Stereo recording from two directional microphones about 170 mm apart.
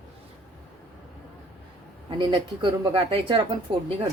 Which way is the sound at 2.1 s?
30° right (ahead or behind).